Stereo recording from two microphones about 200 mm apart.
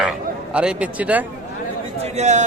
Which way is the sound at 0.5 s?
5° right (ahead or behind).